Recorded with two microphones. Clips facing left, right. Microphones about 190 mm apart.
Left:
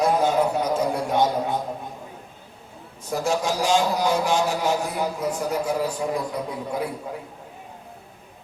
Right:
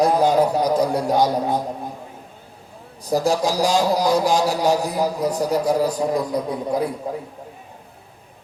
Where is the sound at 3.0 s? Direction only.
35° right (ahead or behind).